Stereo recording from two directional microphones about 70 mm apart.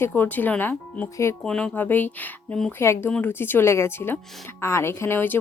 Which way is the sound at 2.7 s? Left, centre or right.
Left.